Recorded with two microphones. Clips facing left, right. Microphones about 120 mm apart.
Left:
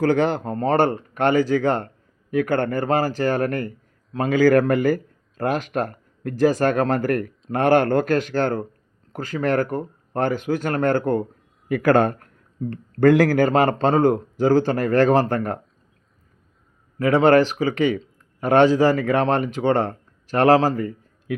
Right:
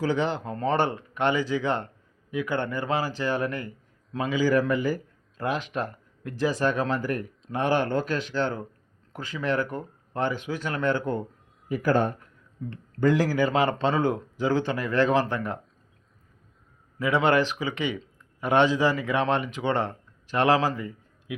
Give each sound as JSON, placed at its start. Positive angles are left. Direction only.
{"t": 0.0, "sound": "speech", "side_deg": 50}
{"t": 11.7, "sound": "a man's voice", "side_deg": 70}
{"t": 17.1, "sound": "a man's voice", "side_deg": 40}
{"t": 21.3, "sound": "a man's voice", "side_deg": 50}